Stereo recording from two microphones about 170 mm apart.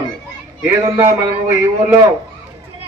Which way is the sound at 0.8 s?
15° right (ahead or behind).